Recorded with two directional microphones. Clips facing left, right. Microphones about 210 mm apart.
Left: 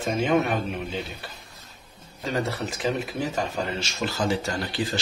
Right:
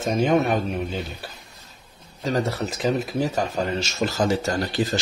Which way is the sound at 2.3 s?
40° right (ahead or behind).